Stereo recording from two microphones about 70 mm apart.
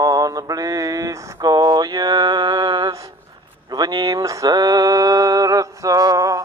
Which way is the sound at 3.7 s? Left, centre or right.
Right.